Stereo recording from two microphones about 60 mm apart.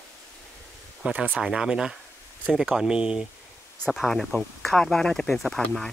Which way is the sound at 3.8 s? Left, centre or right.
Centre.